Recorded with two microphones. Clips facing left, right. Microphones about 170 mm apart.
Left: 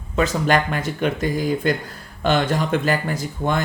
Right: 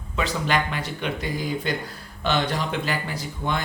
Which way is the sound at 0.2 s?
45° left (ahead or behind).